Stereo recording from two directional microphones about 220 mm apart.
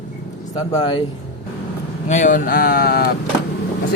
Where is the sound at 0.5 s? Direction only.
15° left (ahead or behind).